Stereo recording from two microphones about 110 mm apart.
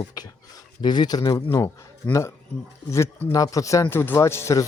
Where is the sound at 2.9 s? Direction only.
20° left (ahead or behind).